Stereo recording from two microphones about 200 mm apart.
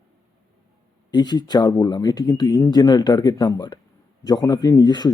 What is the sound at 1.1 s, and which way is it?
Speech, 20° left (ahead or behind).